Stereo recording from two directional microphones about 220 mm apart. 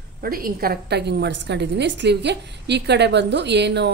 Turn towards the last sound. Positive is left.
turn(degrees=-50)  # may be behind; listen again after turning